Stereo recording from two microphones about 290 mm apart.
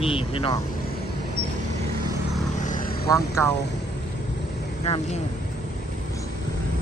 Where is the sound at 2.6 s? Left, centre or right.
Left.